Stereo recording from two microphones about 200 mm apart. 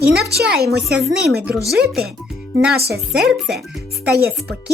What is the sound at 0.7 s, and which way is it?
Speech, centre (ahead or behind).